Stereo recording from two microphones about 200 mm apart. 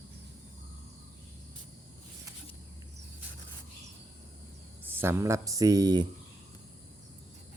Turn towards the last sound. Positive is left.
turn(degrees=-20)  # may be behind; listen again after turning